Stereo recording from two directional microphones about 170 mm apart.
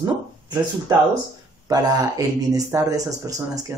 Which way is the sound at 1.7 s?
20° right (ahead or behind).